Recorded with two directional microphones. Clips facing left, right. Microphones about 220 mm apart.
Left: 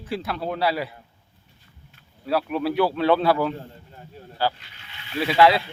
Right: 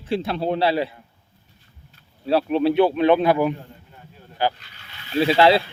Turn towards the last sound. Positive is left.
turn(degrees=-30)  # may be behind; listen again after turning